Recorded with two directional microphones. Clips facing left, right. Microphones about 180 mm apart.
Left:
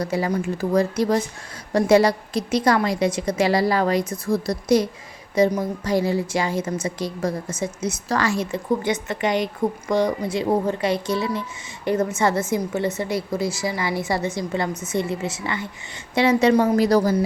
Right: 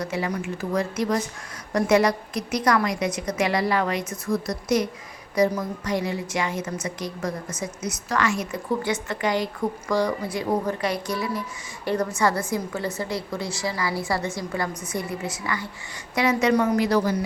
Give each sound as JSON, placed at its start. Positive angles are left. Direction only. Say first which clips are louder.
{"t": 0.0, "sound": "a woman's voice", "louder": "left 4 dB", "side_deg": 35}